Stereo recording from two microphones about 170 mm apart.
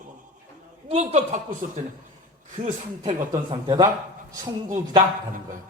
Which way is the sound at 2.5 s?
50° right (ahead or behind).